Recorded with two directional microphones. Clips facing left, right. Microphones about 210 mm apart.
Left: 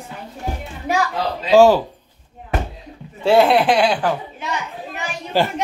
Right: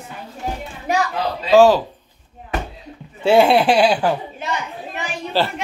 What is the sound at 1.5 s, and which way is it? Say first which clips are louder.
Speech: even; 15° left (ahead or behind).